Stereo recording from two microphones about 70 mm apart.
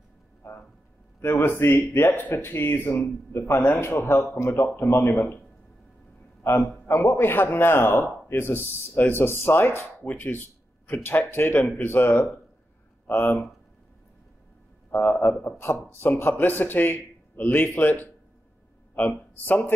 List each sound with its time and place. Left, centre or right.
0.4 s a sound: left
1.2 s speech: left
6.4 s speech: left
14.9 s a man's voice: left